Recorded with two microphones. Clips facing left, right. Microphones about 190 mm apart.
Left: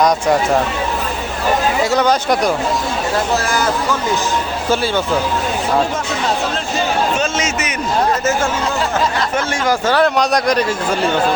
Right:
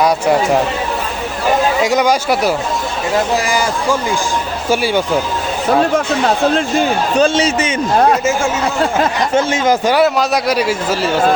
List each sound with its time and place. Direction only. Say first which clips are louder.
1.8 s a man's voice: right 1 dB; 15° right (ahead or behind)
4.7 s a man's voice: right 2 dB; 10° right (ahead or behind)
7.2 s a man's voice: right 7 dB; 30° right (ahead or behind)
9.3 s a man's voice: right 4 dB; 20° right (ahead or behind)